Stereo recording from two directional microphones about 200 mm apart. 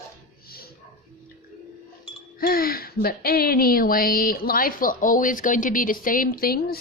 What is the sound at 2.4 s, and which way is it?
Speech, 45° left (ahead or behind).